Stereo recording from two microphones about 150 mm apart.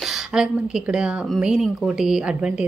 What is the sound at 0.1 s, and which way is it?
A woman's voice, 5° right (ahead or behind).